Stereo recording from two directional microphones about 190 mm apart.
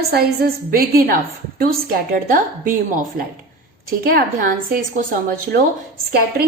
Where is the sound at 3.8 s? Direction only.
50° right (ahead or behind).